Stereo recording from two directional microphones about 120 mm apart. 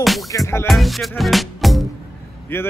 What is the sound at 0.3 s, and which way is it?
Music, 25° left (ahead or behind).